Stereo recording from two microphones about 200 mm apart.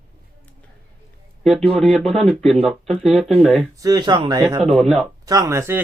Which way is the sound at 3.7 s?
20° right (ahead or behind).